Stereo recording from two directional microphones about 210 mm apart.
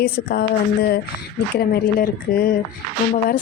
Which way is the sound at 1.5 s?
45° left (ahead or behind).